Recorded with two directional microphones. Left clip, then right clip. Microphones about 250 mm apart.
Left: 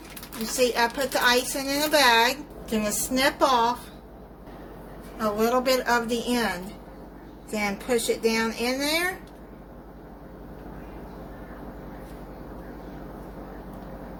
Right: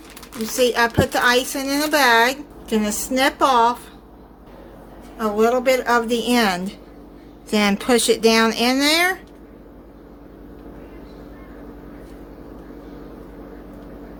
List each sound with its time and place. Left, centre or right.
0.5 s a woman's voice: centre
5.1 s a woman's voice: centre